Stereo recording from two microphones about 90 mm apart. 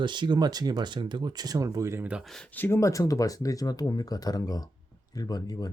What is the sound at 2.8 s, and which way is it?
Speech, 40° left (ahead or behind).